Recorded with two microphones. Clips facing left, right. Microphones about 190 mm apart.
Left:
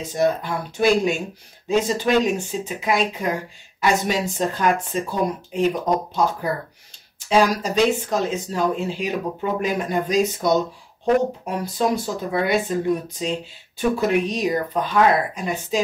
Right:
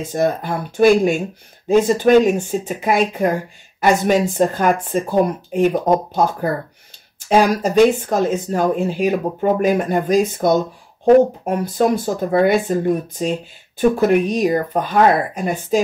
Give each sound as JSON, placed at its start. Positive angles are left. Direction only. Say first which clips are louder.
{"t": 0.0, "sound": "speech", "louder": "right 2 dB", "side_deg": -50}